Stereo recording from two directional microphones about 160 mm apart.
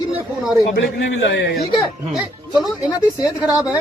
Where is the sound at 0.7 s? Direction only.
90° left.